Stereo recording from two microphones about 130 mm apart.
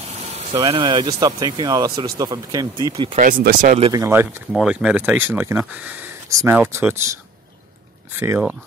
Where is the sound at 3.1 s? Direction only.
90° right.